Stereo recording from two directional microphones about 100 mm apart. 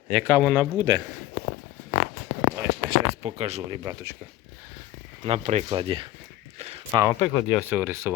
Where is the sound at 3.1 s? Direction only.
90° right.